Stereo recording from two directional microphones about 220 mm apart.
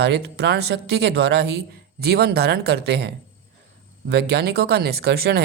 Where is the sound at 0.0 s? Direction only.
50° right (ahead or behind).